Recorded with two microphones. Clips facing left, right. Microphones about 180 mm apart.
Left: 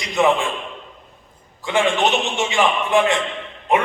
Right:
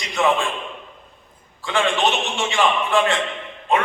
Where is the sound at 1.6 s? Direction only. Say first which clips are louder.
Left 2 dB; 20° left (ahead or behind).